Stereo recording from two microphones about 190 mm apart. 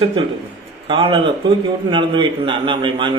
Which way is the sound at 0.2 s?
25° right (ahead or behind).